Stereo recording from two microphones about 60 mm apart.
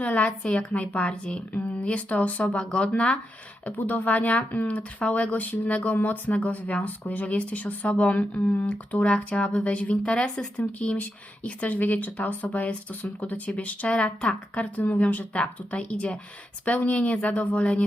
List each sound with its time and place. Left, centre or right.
0.0 s speech: left
3.7 s speech: left